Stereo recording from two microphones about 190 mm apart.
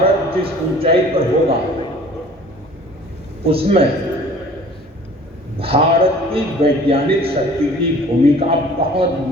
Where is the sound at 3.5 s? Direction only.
30° right (ahead or behind).